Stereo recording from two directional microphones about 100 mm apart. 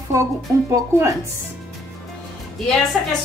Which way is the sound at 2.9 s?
Centre (ahead or behind).